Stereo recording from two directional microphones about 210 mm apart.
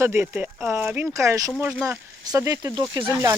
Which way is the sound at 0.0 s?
10° right (ahead or behind).